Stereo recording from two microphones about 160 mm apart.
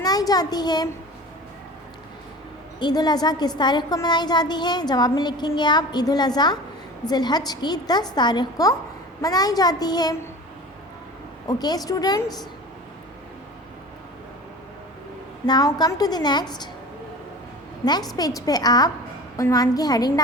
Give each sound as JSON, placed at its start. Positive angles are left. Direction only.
{"t": 0.0, "sound": "a child's voice", "side_deg": 25}
{"t": 2.7, "sound": "a woman's voice", "side_deg": 25}
{"t": 11.4, "sound": "a woman's voice", "side_deg": 25}
{"t": 15.4, "sound": "a woman's voice", "side_deg": 25}
{"t": 18.1, "sound": "a woman's voice", "side_deg": 20}